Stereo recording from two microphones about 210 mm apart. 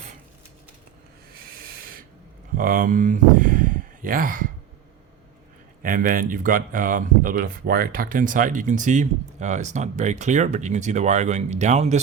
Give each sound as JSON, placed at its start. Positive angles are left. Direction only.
{"t": 1.3, "sound": "rub", "side_deg": -45}
{"t": 2.6, "sound": "speech", "side_deg": -40}
{"t": 5.8, "sound": "speech", "side_deg": -40}